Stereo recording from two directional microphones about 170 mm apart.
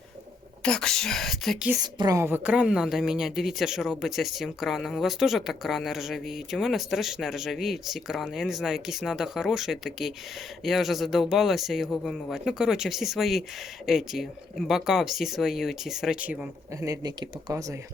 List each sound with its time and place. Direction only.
0.6 s a woman's voice: 5° left (ahead or behind)
1.8 s a woman's voice: 25° right (ahead or behind); by 16.5 s 5° right (ahead or behind)
16.8 s speech: 20° right (ahead or behind)